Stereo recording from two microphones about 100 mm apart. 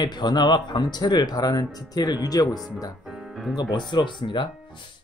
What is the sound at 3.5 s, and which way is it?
Speech, 50° left (ahead or behind).